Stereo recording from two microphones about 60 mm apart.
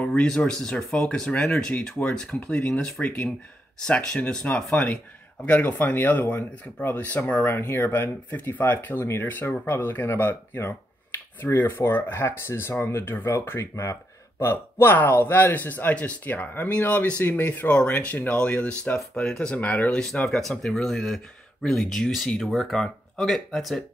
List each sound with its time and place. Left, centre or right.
0.0 s speech: centre
1.7 s speech: left
5.5 s speech: left
19.5 s speech: left
19.9 s speech: centre